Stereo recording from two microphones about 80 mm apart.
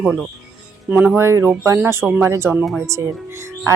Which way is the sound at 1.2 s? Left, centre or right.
Right.